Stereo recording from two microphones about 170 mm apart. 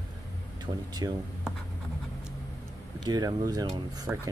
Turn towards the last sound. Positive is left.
turn(degrees=-20)  # may be behind; listen again after turning